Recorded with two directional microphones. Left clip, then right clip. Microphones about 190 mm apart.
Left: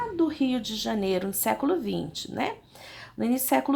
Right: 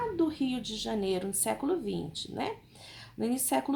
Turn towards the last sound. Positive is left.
turn(degrees=20)  # may be behind; listen again after turning